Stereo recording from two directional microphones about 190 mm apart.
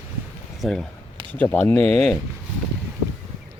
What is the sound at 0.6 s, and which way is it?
Speech, centre (ahead or behind).